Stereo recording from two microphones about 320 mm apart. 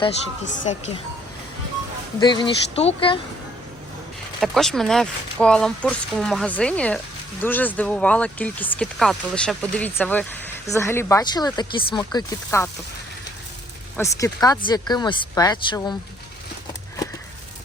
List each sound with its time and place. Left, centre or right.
0.5 s speech: left
2.2 s speech: centre
4.4 s speech: centre
13.9 s speech: centre